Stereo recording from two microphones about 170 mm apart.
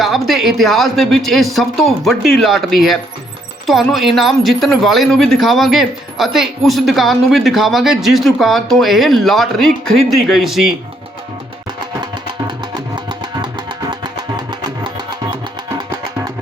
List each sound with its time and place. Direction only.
0.0 s speech: centre (ahead or behind)